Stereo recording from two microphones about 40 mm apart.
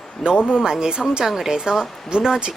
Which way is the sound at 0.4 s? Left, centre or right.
Centre.